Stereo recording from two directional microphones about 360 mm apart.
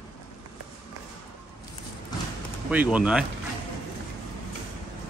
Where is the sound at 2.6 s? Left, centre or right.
Centre.